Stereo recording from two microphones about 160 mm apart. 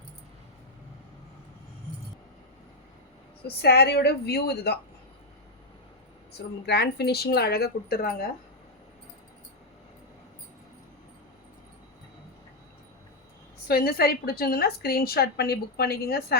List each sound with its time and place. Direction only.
3.4 s a woman's voice: 90° left
6.7 s speech: 90° left; by 8.1 s 70° left (ahead or behind)
13.7 s a woman's voice: 70° left (ahead or behind)